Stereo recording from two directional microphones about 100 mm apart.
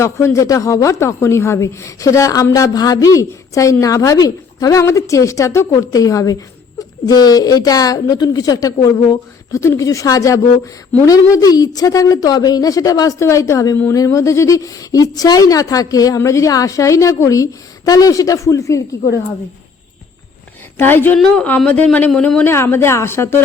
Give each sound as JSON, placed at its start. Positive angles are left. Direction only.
{"t": 0.0, "sound": "speech", "side_deg": 30}
{"t": 20.7, "sound": "a woman's voice", "side_deg": 20}
{"t": 22.4, "sound": "a woman's voice", "side_deg": 25}